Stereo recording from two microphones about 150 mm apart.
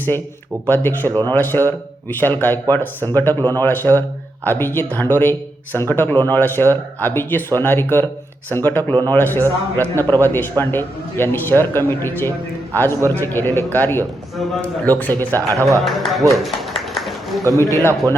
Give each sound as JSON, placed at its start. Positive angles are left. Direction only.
{"t": 0.7, "sound": "speech", "side_deg": 15}
{"t": 15.4, "sound": "speech", "side_deg": -20}
{"t": 15.8, "sound": "speech", "side_deg": 0}
{"t": 16.3, "sound": "a sound", "side_deg": 0}
{"t": 17.6, "sound": "a man's voice", "side_deg": 20}